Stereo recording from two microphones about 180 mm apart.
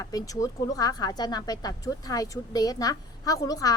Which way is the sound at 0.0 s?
20° left (ahead or behind).